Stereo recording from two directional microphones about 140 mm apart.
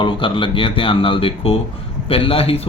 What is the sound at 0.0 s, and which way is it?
Speech, 35° left (ahead or behind).